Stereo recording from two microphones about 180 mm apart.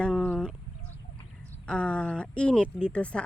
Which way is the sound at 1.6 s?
5° left (ahead or behind).